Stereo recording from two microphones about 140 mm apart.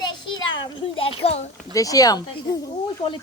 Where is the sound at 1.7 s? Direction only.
25° left (ahead or behind).